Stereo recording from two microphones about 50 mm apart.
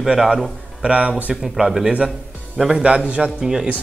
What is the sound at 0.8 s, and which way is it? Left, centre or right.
Speech, right.